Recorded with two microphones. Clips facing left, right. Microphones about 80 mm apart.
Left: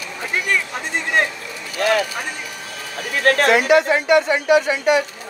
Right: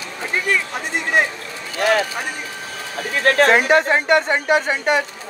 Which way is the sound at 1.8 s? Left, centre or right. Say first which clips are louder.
Right 1 dB; right.